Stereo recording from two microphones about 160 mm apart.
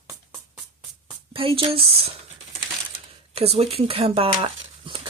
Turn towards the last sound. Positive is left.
turn(degrees=-30)  # may be behind; listen again after turning